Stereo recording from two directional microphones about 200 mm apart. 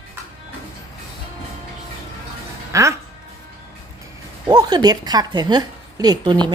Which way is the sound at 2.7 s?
15° right (ahead or behind).